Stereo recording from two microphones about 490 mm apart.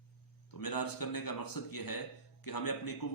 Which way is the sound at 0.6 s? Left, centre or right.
Left.